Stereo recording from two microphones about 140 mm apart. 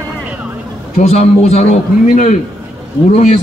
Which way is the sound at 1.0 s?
50° left (ahead or behind).